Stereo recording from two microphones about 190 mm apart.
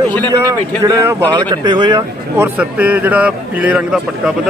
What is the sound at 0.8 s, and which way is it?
Speech, 20° right (ahead or behind).